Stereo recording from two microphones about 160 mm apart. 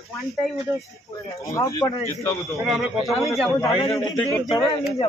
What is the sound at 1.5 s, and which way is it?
Speech, 20° left (ahead or behind).